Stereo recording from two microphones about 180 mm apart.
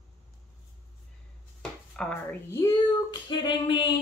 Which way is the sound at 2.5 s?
15° left (ahead or behind).